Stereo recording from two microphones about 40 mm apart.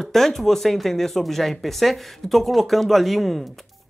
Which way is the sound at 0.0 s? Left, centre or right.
Centre.